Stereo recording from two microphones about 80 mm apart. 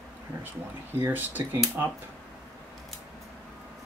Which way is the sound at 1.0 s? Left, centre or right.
Right.